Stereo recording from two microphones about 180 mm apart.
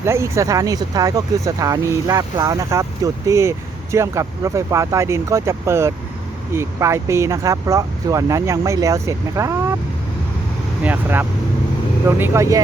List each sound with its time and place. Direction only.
0.0 s speech: 15° right (ahead or behind)
10.8 s speech: 10° right (ahead or behind)